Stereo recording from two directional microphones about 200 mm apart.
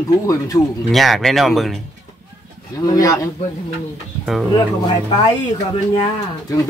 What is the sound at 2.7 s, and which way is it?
Speech, 15° left (ahead or behind).